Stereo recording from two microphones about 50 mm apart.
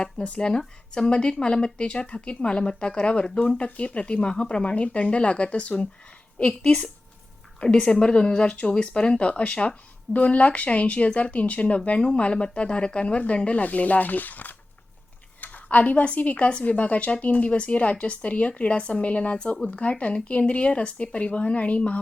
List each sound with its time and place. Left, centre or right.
0.0 s a woman's voice: left